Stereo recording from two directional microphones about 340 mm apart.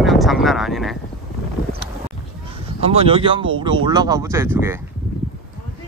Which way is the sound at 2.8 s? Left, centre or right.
Centre.